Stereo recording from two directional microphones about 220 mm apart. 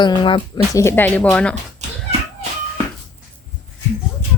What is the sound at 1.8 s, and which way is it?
Cat, 30° right (ahead or behind).